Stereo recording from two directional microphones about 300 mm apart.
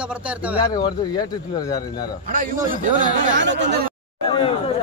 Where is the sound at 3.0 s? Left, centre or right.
Right.